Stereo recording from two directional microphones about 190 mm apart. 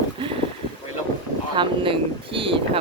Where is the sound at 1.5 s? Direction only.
25° right (ahead or behind).